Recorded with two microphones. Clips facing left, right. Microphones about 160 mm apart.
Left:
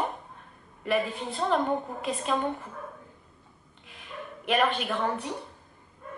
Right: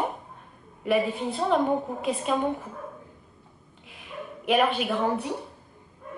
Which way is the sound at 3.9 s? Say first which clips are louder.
Right 3 dB; 5° right (ahead or behind).